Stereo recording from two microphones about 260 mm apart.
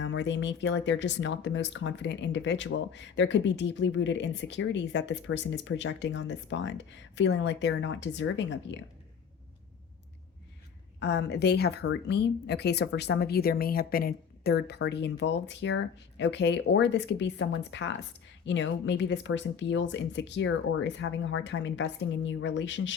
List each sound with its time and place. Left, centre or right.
0.0 s speech: left
11.0 s speech: left